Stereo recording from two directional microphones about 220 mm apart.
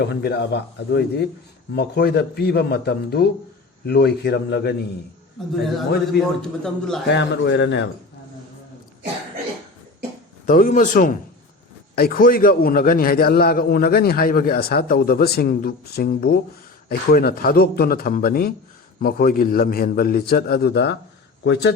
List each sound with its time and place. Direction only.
0.0 s a man's voice: 45° left (ahead or behind)
6.1 s a man's voice: 5° left (ahead or behind)
7.1 s a man's voice: 50° left (ahead or behind)
10.4 s a man's voice: 35° left (ahead or behind)